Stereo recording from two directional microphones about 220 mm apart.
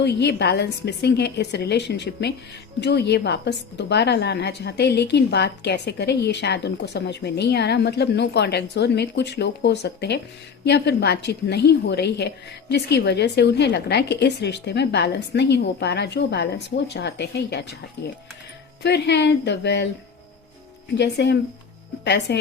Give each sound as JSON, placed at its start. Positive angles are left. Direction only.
{"t": 0.0, "sound": "a woman's voice", "side_deg": 50}
{"t": 20.9, "sound": "a woman's voice", "side_deg": 50}